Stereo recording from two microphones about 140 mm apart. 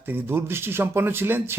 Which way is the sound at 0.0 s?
15° right (ahead or behind).